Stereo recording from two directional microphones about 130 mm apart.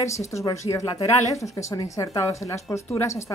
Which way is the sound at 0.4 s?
25° left (ahead or behind).